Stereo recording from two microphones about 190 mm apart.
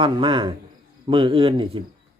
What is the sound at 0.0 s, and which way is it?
Speech, 25° right (ahead or behind).